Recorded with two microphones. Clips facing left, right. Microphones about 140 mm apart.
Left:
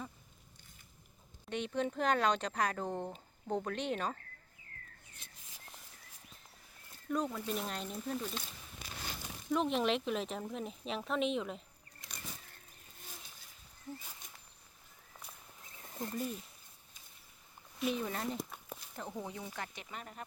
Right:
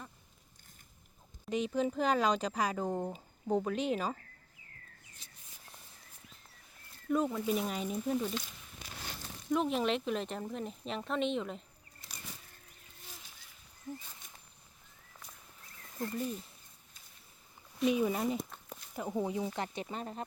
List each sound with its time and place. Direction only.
1.5 s speech: 5° right (ahead or behind)
5.2 s a sound: 55° left (ahead or behind)
7.1 s speech: 5° right (ahead or behind)
9.5 s speech: centre (ahead or behind)
15.8 s a sound: 15° left (ahead or behind)
17.9 s speech: 10° right (ahead or behind)
19.1 s speech: 20° right (ahead or behind)